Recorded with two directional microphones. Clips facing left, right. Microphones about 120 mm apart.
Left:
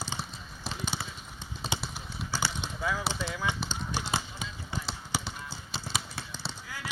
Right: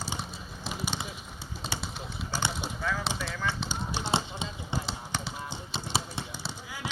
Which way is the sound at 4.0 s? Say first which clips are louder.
Right 6 dB; 25° right (ahead or behind).